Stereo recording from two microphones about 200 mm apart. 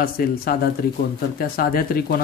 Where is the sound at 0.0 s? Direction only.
50° left (ahead or behind).